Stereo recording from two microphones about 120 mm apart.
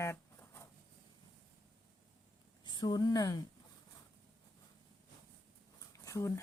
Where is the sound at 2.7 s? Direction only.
35° left (ahead or behind).